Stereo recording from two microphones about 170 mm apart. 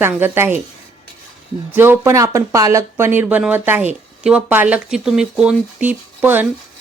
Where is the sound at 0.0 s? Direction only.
15° right (ahead or behind).